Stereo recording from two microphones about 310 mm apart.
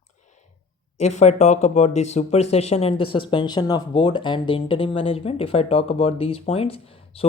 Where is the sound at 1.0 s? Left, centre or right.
Left.